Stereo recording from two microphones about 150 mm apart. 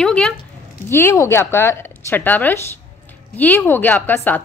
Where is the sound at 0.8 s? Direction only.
15° left (ahead or behind).